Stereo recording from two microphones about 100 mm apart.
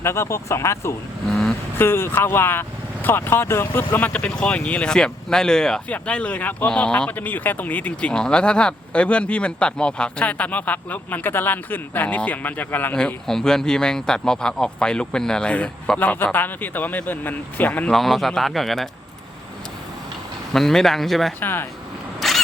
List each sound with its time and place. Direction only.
0.0 s speech: 25° left (ahead or behind)
1.3 s vehicle: 5° left (ahead or behind)
1.7 s speech: 20° left (ahead or behind)
13.0 s speech: 5° left (ahead or behind)
17.9 s a man's voice: centre (ahead or behind)
20.5 s a man's voice: 5° left (ahead or behind)
21.4 s speech: 20° left (ahead or behind)
22.2 s vehicle: centre (ahead or behind)